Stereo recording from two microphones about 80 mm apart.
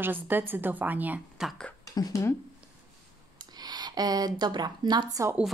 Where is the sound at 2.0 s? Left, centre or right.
Left.